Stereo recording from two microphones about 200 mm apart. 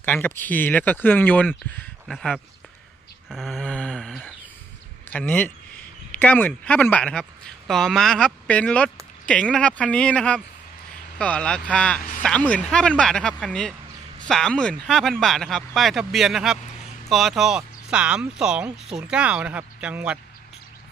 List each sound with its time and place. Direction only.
0.0 s speech: 10° left (ahead or behind); by 20.2 s 5° right (ahead or behind)